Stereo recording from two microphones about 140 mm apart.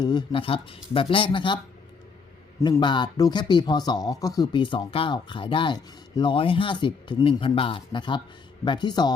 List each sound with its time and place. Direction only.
0.0 s speech: 30° left (ahead or behind)
2.6 s a man's voice: 20° left (ahead or behind)
2.8 s speech: 35° left (ahead or behind)